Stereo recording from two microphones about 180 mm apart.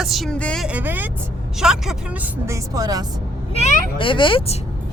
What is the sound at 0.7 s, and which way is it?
A woman's voice, 10° right (ahead or behind).